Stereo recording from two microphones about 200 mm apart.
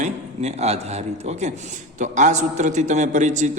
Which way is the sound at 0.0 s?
35° right (ahead or behind).